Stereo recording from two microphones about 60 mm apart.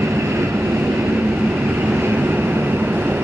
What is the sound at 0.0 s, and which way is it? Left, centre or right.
Vehicle, right.